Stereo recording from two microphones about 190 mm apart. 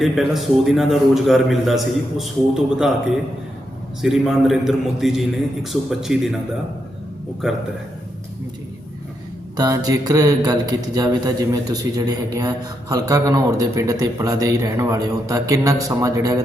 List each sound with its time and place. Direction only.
0.0 s a man's voice: centre (ahead or behind)
4.0 s a man's voice: centre (ahead or behind)
9.6 s speech: 20° right (ahead or behind)